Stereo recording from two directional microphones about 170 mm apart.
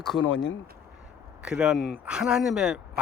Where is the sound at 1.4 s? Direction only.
5° right (ahead or behind).